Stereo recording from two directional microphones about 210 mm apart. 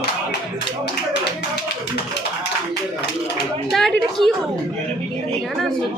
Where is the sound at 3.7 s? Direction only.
Centre (ahead or behind).